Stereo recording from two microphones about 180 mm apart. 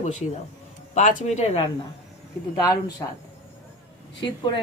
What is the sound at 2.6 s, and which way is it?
Speech, 20° left (ahead or behind).